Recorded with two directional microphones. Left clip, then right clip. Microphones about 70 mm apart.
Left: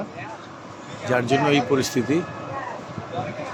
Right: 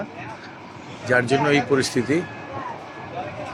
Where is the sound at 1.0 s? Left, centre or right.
Left.